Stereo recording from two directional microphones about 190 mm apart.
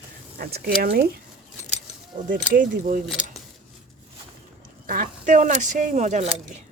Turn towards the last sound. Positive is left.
turn(degrees=-35)  # may be behind; listen again after turning